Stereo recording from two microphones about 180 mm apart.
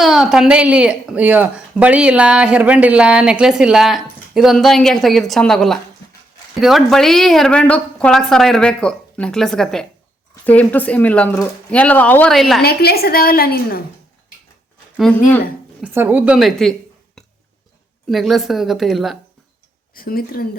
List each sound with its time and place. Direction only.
0.0 s speech: centre (ahead or behind)
12.6 s a woman's voice: 60° left (ahead or behind)
15.8 s a woman's voice: 10° right (ahead or behind)
18.1 s speech: centre (ahead or behind)
19.9 s a woman's voice: 55° left (ahead or behind)